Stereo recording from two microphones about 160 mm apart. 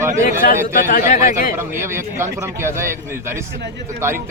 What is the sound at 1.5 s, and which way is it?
A man's voice, 15° right (ahead or behind).